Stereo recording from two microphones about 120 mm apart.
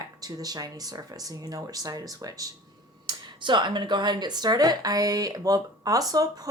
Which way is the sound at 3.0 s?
40° right (ahead or behind).